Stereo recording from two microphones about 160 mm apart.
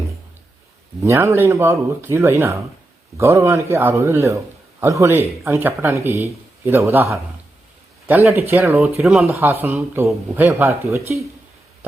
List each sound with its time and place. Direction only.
1.0 s a man's voice: 20° right (ahead or behind)
8.8 s speech: centre (ahead or behind)
9.3 s a man's voice: 15° right (ahead or behind)